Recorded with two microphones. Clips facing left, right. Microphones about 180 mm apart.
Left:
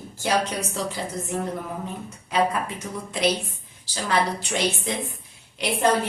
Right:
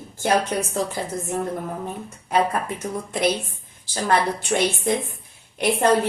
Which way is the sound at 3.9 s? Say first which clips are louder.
Right 3 dB; 50° right (ahead or behind).